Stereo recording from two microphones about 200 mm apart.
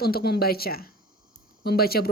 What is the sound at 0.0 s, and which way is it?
Speech, 50° left (ahead or behind).